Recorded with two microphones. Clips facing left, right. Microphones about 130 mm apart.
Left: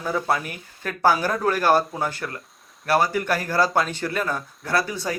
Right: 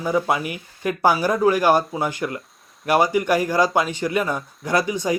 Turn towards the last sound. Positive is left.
turn(degrees=-15)  # may be behind; listen again after turning